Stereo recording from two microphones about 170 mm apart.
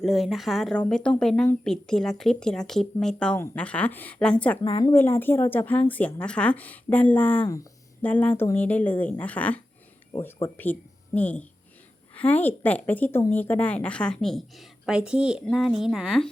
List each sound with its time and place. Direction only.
0.0 s a woman's voice: centre (ahead or behind)